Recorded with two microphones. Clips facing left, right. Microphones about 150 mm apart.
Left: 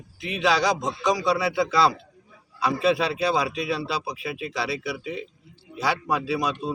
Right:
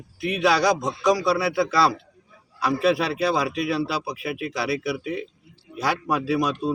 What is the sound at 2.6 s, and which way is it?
A man's voice, 5° right (ahead or behind).